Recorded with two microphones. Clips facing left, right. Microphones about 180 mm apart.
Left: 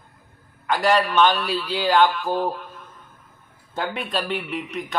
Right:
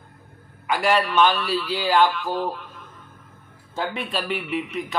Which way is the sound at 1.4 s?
45° left (ahead or behind).